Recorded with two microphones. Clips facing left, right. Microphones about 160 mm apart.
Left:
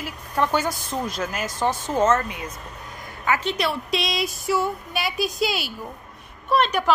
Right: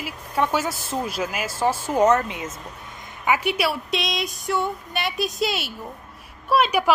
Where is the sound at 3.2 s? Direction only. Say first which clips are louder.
Right 1 dB; 10° right (ahead or behind).